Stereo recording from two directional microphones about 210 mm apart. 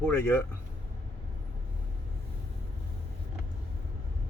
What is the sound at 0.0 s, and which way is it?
Speech, 10° left (ahead or behind).